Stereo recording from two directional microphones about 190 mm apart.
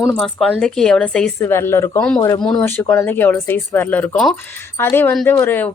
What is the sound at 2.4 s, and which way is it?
A woman's voice, 5° left (ahead or behind).